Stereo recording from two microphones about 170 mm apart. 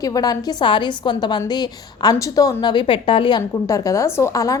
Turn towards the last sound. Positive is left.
turn(degrees=20)  # may be behind; listen again after turning